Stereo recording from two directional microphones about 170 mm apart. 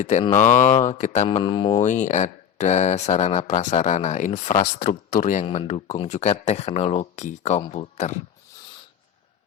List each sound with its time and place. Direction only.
0.0 s speech: 40° left (ahead or behind)
1.8 s speech: 45° left (ahead or behind)
4.8 s speech: 55° left (ahead or behind)